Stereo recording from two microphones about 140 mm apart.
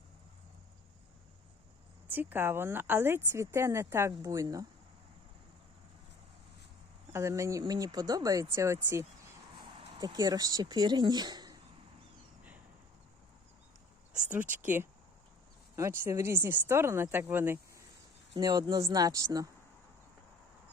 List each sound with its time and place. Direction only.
2.0 s speech: 15° right (ahead or behind)
7.1 s speech: 20° right (ahead or behind)
9.6 s speech: 30° right (ahead or behind)
14.5 s speech: 15° right (ahead or behind)
18.3 s speech: 30° right (ahead or behind)